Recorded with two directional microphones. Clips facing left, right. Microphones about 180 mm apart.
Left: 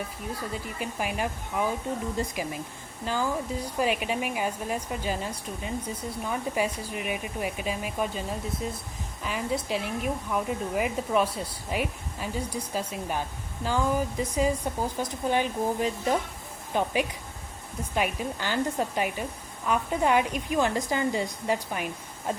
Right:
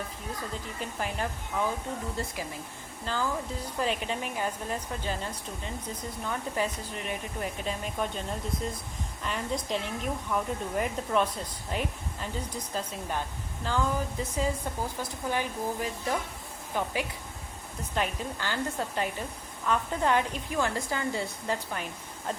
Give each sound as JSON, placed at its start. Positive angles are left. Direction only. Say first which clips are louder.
{"t": 0.5, "sound": "a woman's voice", "louder": "left 3 dB", "side_deg": 10}